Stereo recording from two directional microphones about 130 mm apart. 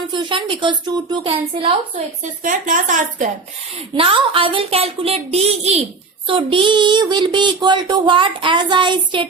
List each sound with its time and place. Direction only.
0.1 s speech: 40° right (ahead or behind)
2.4 s speech: 85° right
3.8 s a woman's voice: 45° right (ahead or behind)
6.2 s speech: 40° right (ahead or behind)